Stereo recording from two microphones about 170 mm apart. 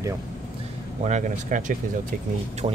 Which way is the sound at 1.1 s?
45° right (ahead or behind).